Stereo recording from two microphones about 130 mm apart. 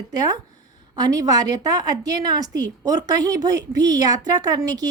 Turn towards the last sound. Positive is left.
turn(degrees=-30)  # may be behind; listen again after turning